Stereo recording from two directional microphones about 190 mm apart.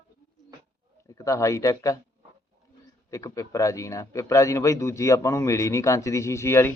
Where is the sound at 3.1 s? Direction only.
15° left (ahead or behind).